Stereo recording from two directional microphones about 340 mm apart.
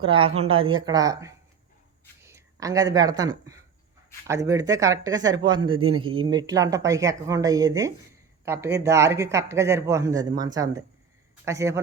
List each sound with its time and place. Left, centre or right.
0.0 s speech: centre